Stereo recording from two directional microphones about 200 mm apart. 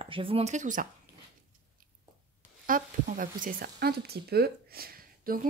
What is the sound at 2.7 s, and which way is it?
Speech, 45° right (ahead or behind).